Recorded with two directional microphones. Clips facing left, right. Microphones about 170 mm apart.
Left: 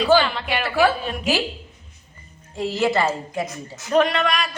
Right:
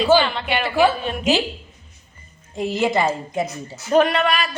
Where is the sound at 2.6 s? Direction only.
20° right (ahead or behind).